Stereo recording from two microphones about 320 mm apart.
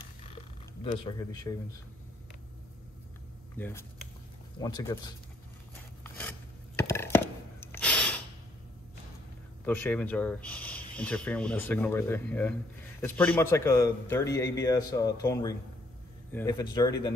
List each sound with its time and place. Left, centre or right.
0.9 s a man's voice: centre
3.5 s a man's voice: centre
6.0 s a sound: centre
7.6 s gasp: centre
9.7 s a man's voice: centre